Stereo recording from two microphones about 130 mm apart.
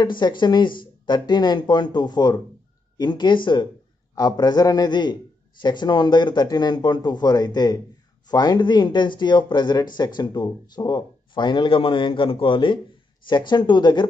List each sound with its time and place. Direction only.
0.0 s speech: 35° left (ahead or behind)